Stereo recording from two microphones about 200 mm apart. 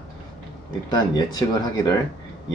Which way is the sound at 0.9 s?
20° left (ahead or behind).